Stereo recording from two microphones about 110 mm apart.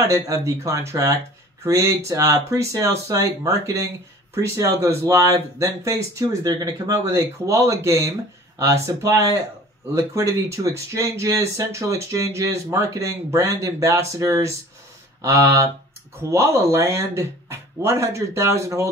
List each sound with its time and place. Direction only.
0.0 s speech: 30° right (ahead or behind)